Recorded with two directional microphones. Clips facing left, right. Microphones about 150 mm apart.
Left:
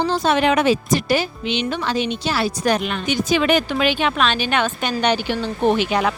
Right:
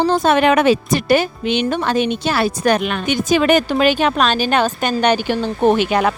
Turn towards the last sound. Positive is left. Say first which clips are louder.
# right 3 dB
turn(degrees=-50)  # may be behind; listen again after turning